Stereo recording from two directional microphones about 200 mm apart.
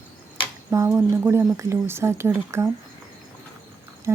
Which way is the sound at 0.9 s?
10° right (ahead or behind).